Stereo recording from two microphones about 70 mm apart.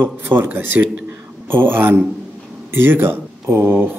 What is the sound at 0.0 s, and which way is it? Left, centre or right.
Speech, right.